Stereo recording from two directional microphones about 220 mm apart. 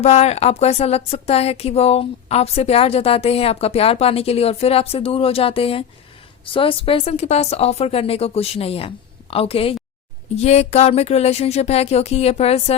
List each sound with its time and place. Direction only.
0.0 s speech: 30° left (ahead or behind)